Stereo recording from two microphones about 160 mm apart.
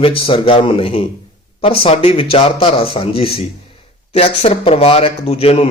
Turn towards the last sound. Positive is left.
turn(degrees=40)  # may be behind; listen again after turning